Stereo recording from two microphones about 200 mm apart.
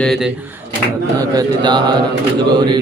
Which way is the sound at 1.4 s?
20° right (ahead or behind).